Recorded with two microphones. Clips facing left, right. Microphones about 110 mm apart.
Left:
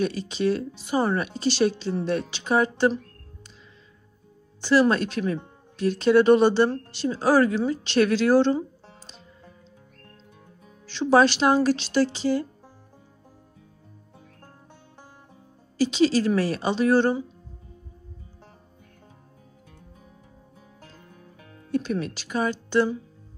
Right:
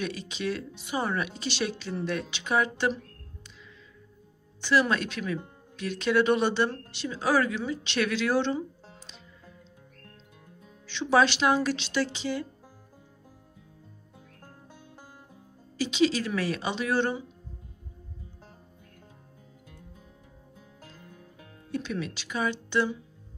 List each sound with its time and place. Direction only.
0.0 s speech: 35° left (ahead or behind)
4.6 s speech: 35° left (ahead or behind)
10.9 s speech: 40° left (ahead or behind)
15.8 s speech: 40° left (ahead or behind)
21.7 s speech: 45° left (ahead or behind)